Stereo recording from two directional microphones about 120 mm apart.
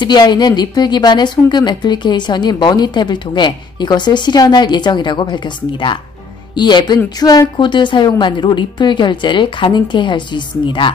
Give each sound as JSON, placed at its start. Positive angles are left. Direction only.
{"t": 0.0, "sound": "a woman's voice", "side_deg": 35}